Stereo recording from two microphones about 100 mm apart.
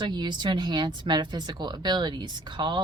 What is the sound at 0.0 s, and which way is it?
Speech, 50° right (ahead or behind).